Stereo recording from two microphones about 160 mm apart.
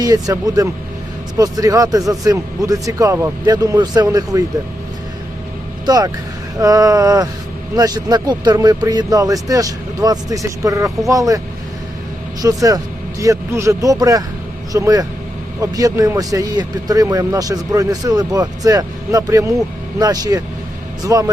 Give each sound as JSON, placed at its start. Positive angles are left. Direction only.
{"t": 0.0, "sound": "speech", "side_deg": -20}
{"t": 5.8, "sound": "speech", "side_deg": -25}
{"t": 12.4, "sound": "speech", "side_deg": -20}